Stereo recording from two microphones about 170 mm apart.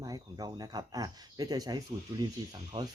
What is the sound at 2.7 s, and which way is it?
Speech, 35° right (ahead or behind).